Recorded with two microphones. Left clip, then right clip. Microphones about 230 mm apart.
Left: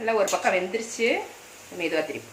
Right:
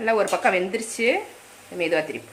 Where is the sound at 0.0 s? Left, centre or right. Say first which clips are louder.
Right 3 dB; right.